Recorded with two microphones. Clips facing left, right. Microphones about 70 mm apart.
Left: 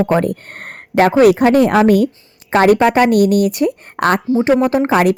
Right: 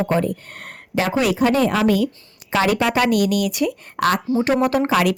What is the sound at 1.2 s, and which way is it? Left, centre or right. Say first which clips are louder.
A woman's voice: left 7 dB; left.